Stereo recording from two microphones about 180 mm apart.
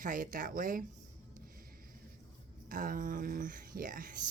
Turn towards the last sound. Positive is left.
turn(degrees=-50)  # may be behind; listen again after turning